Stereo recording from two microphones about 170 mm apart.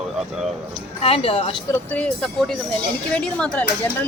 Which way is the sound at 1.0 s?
35° left (ahead or behind).